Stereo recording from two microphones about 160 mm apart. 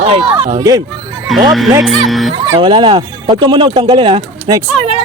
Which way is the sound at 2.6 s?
30° right (ahead or behind).